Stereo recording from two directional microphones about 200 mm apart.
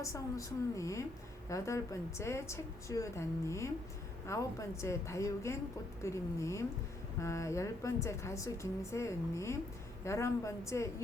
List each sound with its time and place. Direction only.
0.0 s a woman's voice: 15° left (ahead or behind)